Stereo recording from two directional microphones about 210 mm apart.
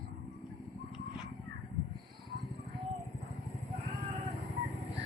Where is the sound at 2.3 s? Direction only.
50° right (ahead or behind).